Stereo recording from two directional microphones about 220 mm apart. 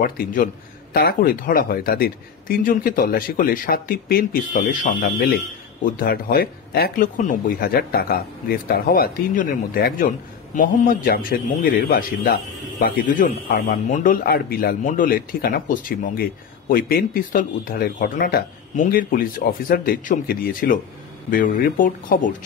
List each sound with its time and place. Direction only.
0.0 s speech: 40° left (ahead or behind)